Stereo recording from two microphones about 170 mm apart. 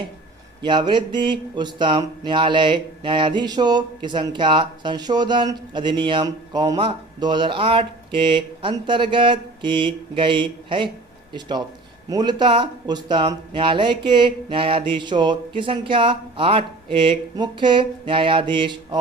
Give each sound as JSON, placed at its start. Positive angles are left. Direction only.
{"t": 0.6, "sound": "speech", "side_deg": -25}